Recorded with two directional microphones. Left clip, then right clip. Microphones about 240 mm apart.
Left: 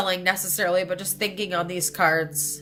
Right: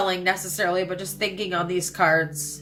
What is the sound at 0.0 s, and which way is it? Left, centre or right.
A woman's voice, left.